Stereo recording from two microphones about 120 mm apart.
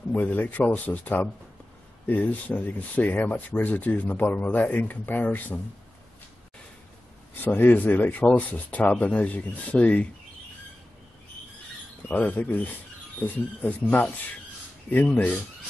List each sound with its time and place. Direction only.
0.1 s speech: 15° left (ahead or behind)
7.4 s speech: 15° left (ahead or behind)
12.1 s speech: 15° left (ahead or behind)